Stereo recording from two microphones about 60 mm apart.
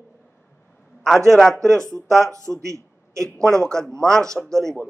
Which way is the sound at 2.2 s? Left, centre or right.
Right.